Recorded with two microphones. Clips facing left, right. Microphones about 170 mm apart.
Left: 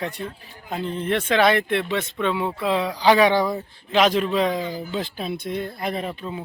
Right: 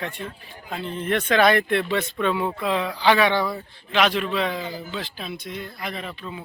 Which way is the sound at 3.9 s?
40° left (ahead or behind).